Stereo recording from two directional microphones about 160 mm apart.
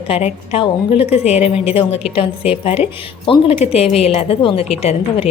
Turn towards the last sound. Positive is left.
turn(degrees=40)  # may be behind; listen again after turning